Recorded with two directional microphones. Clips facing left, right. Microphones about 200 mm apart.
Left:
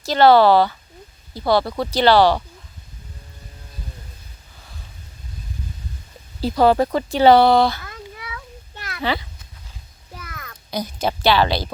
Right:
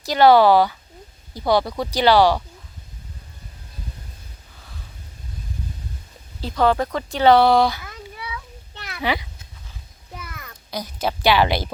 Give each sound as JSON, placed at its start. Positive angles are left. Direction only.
{"t": 0.0, "sound": "speech", "side_deg": -15}
{"t": 6.4, "sound": "speech", "side_deg": 10}
{"t": 7.5, "sound": "speech", "side_deg": -10}
{"t": 9.0, "sound": "speech", "side_deg": -15}
{"t": 10.7, "sound": "a woman's voice", "side_deg": 0}
{"t": 11.2, "sound": "speech", "side_deg": -15}